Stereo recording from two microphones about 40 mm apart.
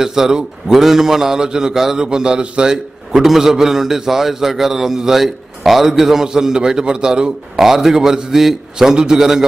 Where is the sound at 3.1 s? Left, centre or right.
Centre.